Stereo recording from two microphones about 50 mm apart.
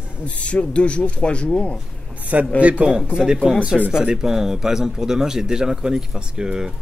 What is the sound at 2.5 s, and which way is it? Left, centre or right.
A man's voice, right.